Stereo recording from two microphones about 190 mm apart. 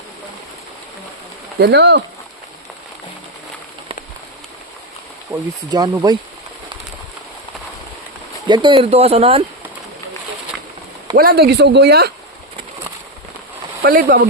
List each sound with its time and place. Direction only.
1.5 s speech: 60° right (ahead or behind)
5.3 s speech: 15° right (ahead or behind)
8.4 s speech: 25° right (ahead or behind)
11.2 s speech: 55° right (ahead or behind)
13.8 s speech: 50° right (ahead or behind)